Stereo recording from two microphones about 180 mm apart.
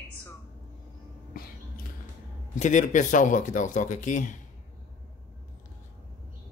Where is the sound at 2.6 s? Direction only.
45° left (ahead or behind).